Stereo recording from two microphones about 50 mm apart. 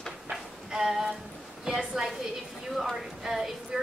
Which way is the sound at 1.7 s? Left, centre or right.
Centre.